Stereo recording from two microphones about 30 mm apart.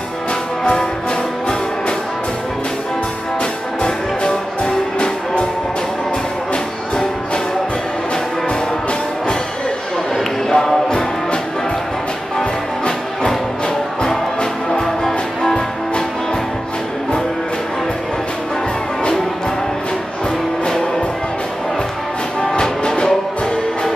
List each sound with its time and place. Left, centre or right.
3.8 s music: left
10.1 s a sound: centre
12.4 s music: left
14.7 s music: centre
22.4 s music: left